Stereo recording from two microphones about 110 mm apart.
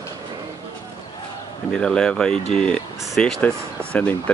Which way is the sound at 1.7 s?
5° left (ahead or behind).